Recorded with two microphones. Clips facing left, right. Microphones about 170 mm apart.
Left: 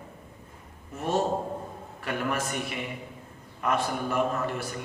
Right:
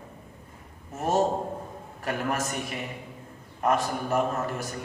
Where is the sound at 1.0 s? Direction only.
40° right (ahead or behind).